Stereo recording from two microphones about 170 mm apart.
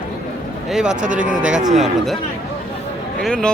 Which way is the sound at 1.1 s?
50° right (ahead or behind).